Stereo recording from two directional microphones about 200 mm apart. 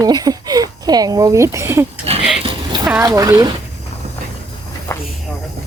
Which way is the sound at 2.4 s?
20° right (ahead or behind).